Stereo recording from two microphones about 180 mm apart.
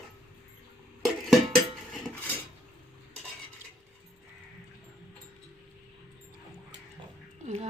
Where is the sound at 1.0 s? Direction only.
Centre (ahead or behind).